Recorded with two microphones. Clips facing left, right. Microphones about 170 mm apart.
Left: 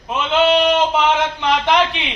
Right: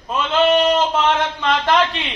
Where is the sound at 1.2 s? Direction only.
Centre (ahead or behind).